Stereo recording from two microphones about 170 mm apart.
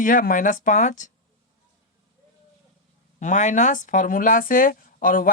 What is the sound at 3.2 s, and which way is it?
Speech, 45° left (ahead or behind).